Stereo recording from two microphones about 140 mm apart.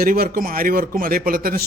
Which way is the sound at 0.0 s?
85° right.